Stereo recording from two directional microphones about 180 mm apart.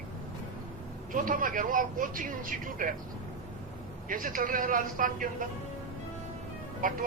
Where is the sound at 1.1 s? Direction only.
50° right (ahead or behind).